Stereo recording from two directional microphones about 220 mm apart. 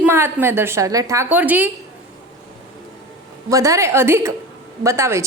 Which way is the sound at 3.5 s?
15° right (ahead or behind).